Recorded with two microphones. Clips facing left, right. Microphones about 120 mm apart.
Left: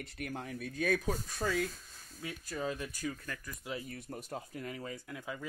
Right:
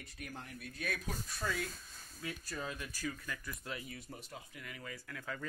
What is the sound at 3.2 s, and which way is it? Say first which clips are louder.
Speech: left 1 dB; 40° left (ahead or behind).